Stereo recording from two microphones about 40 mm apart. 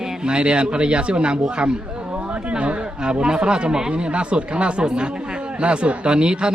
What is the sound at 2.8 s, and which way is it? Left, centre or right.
Speech, right.